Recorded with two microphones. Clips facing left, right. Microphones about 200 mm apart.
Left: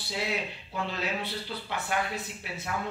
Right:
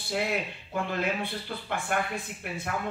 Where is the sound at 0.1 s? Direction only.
55° right (ahead or behind).